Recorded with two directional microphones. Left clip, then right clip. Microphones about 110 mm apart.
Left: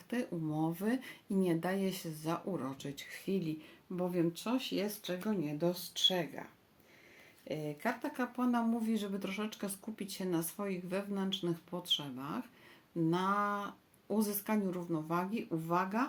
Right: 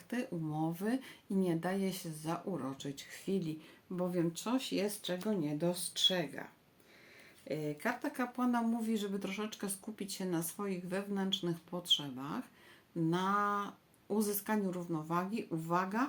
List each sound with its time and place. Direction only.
0.1 s speech: 10° left (ahead or behind)
7.4 s speech: centre (ahead or behind)